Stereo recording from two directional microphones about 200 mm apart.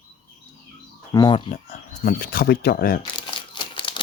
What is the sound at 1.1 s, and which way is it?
Speech, 20° left (ahead or behind).